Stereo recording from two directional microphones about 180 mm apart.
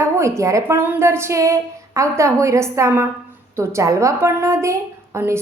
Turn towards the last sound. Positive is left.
turn(degrees=-15)  # may be behind; listen again after turning